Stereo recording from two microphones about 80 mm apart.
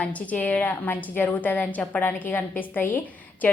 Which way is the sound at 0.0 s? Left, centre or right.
Centre.